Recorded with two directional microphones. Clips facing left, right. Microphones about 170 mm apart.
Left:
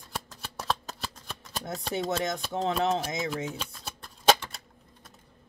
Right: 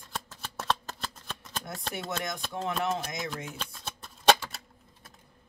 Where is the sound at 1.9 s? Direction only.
25° left (ahead or behind).